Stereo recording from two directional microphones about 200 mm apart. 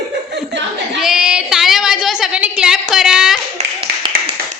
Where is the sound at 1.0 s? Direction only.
5° right (ahead or behind).